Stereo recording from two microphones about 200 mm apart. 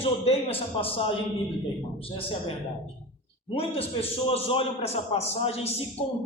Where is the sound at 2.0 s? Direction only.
25° left (ahead or behind).